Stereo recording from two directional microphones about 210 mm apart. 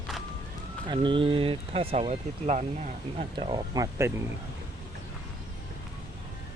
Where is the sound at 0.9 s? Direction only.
25° right (ahead or behind).